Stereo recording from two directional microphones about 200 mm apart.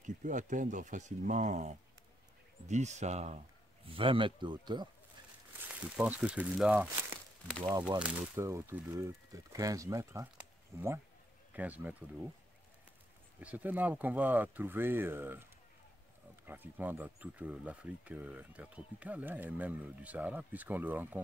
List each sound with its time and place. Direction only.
0.0 s speech: 40° right (ahead or behind); by 4.8 s 20° right (ahead or behind)
5.9 s speech: 5° right (ahead or behind)
13.4 s speech: 5° right (ahead or behind)
16.4 s speech: 10° right (ahead or behind)